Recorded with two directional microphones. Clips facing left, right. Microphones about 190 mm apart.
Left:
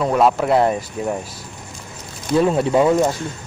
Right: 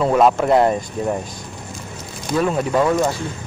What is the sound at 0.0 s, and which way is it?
Speech, centre (ahead or behind).